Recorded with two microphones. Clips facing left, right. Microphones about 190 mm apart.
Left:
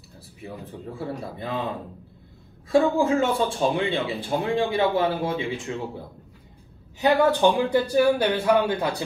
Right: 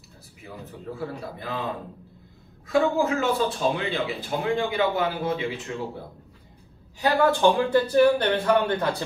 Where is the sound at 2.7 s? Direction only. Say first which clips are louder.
Left 2 dB; 30° left (ahead or behind).